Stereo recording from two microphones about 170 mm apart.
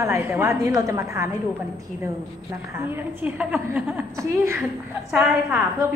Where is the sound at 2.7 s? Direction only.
15° right (ahead or behind).